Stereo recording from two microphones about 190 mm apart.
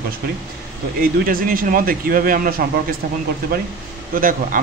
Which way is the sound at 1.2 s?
50° right (ahead or behind).